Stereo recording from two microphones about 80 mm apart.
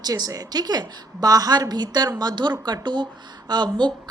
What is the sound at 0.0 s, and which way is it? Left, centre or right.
A woman's voice, right.